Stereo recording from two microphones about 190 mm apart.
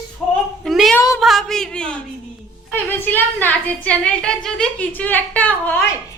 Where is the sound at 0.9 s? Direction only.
15° left (ahead or behind).